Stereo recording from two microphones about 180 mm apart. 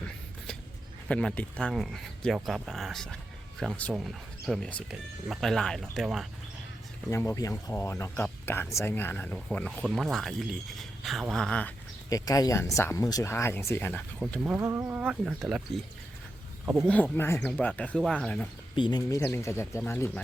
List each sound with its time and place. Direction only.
1.0 s speech: 5° left (ahead or behind)
7.1 s speech: 15° left (ahead or behind)
12.0 s speech: 20° left (ahead or behind)
14.4 s speech: 10° right (ahead or behind)
16.6 s speech: 15° right (ahead or behind)
16.9 s speech: 10° left (ahead or behind)
18.8 s speech: 25° left (ahead or behind)